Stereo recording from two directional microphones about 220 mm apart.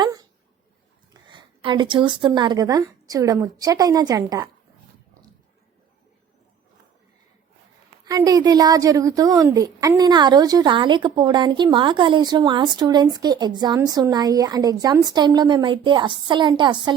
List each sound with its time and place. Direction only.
0.0 s dog: 15° right (ahead or behind)
1.3 s speech: 20° right (ahead or behind)
8.0 s a woman's voice: 15° right (ahead or behind)